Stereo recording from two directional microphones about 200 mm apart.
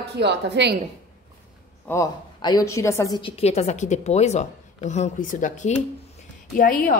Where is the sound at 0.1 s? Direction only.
55° right (ahead or behind).